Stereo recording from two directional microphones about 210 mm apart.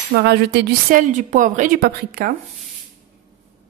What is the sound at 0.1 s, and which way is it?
A woman's voice, 50° right (ahead or behind).